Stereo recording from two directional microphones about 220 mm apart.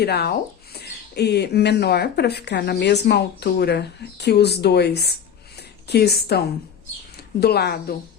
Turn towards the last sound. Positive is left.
turn(degrees=45)  # may be behind; listen again after turning